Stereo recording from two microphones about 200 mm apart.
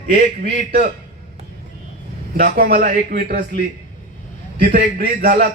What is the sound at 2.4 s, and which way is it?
Speech, 45° right (ahead or behind).